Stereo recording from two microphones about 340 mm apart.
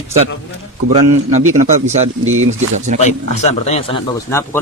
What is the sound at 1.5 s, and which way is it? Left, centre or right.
Speech, right.